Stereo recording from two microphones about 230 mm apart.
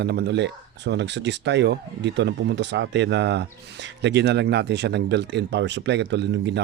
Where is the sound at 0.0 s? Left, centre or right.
Right.